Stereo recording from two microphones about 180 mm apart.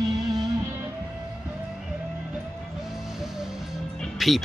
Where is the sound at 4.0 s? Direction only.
Centre (ahead or behind).